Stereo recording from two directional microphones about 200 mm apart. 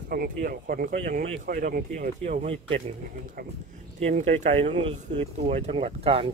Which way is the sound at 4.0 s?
35° right (ahead or behind).